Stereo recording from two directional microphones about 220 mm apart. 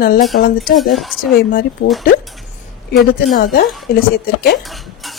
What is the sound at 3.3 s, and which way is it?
Speech, 45° left (ahead or behind).